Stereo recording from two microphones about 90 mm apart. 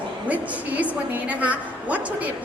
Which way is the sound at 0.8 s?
15° right (ahead or behind).